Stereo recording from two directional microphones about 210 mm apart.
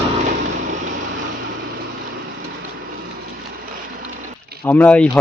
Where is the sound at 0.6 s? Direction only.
35° right (ahead or behind).